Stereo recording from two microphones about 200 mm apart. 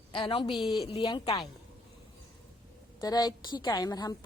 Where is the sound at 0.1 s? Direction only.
25° left (ahead or behind).